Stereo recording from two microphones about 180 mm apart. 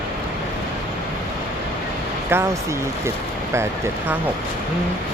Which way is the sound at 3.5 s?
15° right (ahead or behind).